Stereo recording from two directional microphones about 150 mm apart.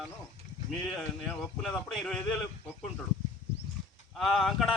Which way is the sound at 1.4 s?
Centre (ahead or behind).